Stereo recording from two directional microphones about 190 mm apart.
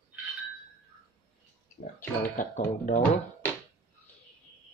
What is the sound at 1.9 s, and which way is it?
Speech, 45° left (ahead or behind).